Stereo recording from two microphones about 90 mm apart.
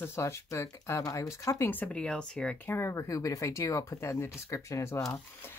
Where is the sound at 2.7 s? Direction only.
30° left (ahead or behind).